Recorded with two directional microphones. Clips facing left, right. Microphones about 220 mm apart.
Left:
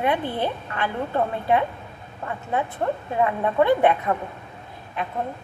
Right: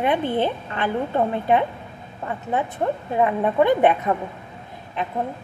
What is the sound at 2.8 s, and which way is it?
A woman's voice, 20° right (ahead or behind).